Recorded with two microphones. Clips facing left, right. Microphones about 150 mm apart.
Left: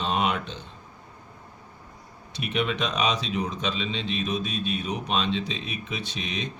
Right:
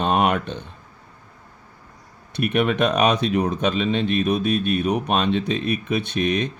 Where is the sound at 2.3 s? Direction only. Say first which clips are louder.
Right 7 dB; 55° right (ahead or behind).